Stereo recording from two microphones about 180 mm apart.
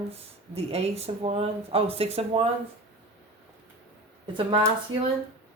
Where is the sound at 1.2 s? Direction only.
30° right (ahead or behind).